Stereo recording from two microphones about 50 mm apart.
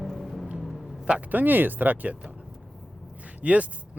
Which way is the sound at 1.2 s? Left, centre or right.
Right.